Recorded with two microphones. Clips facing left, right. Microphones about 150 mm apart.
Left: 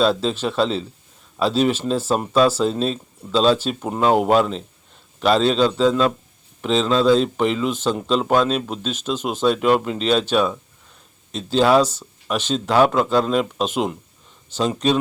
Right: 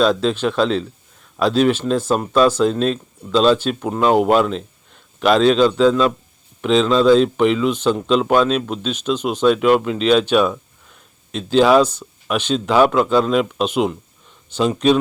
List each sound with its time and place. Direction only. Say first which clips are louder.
0.0 s speech: right 3 dB; 5° left (ahead or behind)